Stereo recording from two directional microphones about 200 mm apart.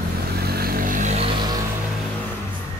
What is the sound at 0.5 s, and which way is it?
Vehicle, 45° right (ahead or behind).